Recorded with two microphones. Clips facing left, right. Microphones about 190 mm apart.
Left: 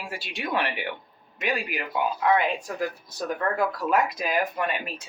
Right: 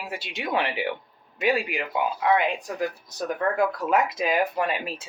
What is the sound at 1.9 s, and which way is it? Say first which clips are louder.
Speech: even; 15° right (ahead or behind).